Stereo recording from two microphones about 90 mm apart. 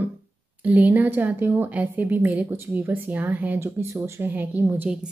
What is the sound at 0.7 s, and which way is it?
A woman's voice, 15° right (ahead or behind).